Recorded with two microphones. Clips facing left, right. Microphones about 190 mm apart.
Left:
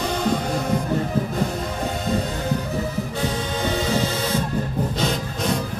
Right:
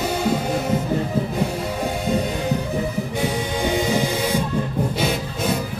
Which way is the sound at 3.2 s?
15° right (ahead or behind).